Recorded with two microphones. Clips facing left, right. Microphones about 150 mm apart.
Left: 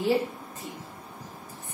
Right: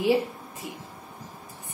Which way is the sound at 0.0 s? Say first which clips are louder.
Right 2 dB; 10° right (ahead or behind).